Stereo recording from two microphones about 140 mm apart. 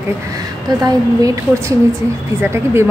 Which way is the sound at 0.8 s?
25° right (ahead or behind).